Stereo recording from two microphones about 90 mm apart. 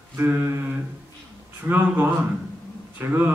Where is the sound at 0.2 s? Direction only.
25° right (ahead or behind).